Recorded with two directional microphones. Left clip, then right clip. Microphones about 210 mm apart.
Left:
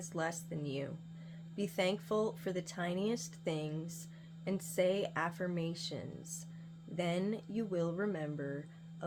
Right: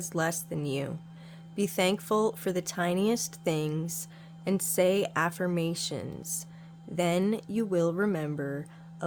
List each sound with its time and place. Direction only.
0.0 s speech: 40° right (ahead or behind)